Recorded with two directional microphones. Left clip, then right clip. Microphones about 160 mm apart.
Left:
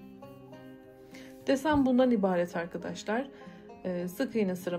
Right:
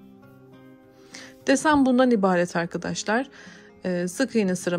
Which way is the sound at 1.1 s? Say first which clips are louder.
Right 7 dB; 45° right (ahead or behind).